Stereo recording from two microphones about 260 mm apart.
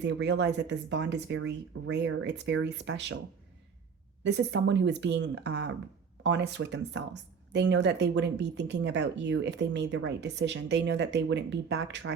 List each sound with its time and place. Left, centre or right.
0.0 s speech: right
4.5 s speech: right